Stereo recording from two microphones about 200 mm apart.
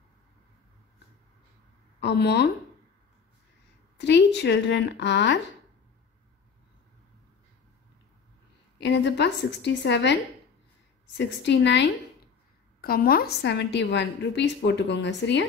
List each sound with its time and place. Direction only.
2.0 s speech: 55° left (ahead or behind)
4.0 s a woman's voice: 60° left (ahead or behind)
8.7 s a woman's voice: 60° left (ahead or behind)
11.1 s a woman's voice: 60° left (ahead or behind)
12.8 s a woman's voice: 50° left (ahead or behind)